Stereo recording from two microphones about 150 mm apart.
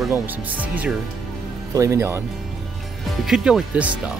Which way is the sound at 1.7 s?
20° right (ahead or behind).